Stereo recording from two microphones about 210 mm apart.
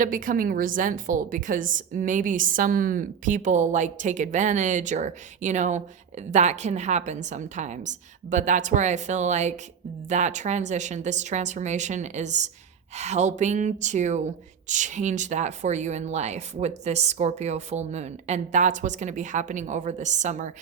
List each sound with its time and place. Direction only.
0.0 s a woman's voice: 40° right (ahead or behind)